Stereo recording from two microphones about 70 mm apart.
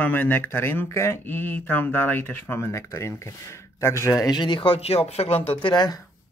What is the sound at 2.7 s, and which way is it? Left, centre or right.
Speech, left.